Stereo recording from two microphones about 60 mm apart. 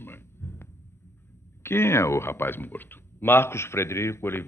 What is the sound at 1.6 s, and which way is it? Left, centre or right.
Speech, left.